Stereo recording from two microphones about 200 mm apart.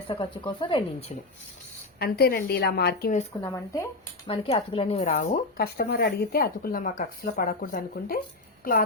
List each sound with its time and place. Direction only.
0.1 s speech: 25° left (ahead or behind)
2.0 s speech: 50° left (ahead or behind)
3.4 s speech: 15° left (ahead or behind)
4.3 s speech: 25° left (ahead or behind); by 8.2 s 45° left (ahead or behind)